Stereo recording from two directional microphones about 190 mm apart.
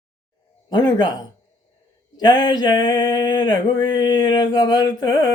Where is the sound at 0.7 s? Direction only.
25° left (ahead or behind).